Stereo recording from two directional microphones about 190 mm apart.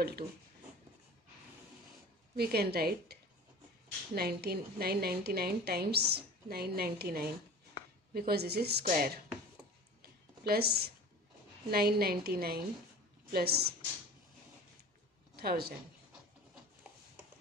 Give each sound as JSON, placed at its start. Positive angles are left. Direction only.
{"t": 2.3, "sound": "a woman's voice", "side_deg": -55}
{"t": 10.0, "sound": "a sound", "side_deg": -55}
{"t": 11.7, "sound": "a woman's voice", "side_deg": -55}
{"t": 15.3, "sound": "a woman's voice", "side_deg": -55}